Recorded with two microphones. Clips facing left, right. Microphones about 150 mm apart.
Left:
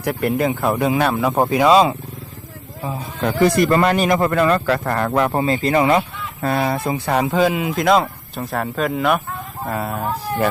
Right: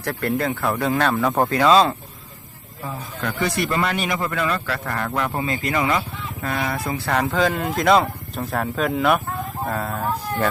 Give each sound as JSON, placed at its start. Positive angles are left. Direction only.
{"t": 0.0, "sound": "speech", "side_deg": 15}
{"t": 3.4, "sound": "a man's voice", "side_deg": 40}
{"t": 7.8, "sound": "speech", "side_deg": 0}